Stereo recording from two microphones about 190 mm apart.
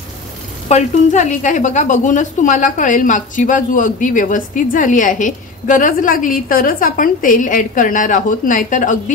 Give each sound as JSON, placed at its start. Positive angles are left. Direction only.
{"t": 0.7, "sound": "a woman's voice", "side_deg": 40}